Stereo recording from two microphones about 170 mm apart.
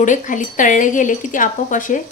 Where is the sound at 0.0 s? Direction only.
50° left (ahead or behind).